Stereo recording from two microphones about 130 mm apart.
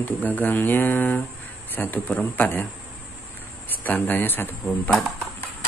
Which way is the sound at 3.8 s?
15° left (ahead or behind).